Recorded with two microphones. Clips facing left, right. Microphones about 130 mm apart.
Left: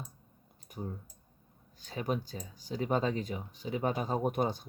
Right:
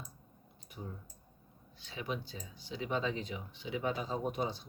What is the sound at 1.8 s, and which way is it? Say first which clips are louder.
Speech: left 5 dB; 45° left (ahead or behind).